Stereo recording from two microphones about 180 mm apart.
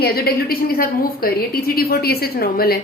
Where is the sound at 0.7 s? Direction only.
55° left (ahead or behind).